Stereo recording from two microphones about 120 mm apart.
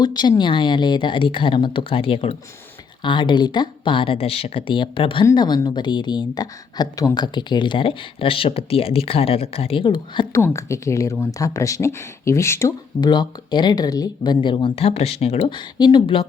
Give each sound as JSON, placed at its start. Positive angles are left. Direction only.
{"t": 0.0, "sound": "speech", "side_deg": 35}
{"t": 10.3, "sound": "speech", "side_deg": 25}
{"t": 13.0, "sound": "speech", "side_deg": 35}
{"t": 15.4, "sound": "speech", "side_deg": 40}